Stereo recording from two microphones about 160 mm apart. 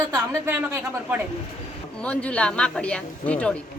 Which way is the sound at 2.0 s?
10° left (ahead or behind).